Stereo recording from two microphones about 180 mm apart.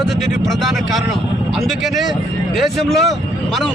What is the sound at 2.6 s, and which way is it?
Speech, centre (ahead or behind).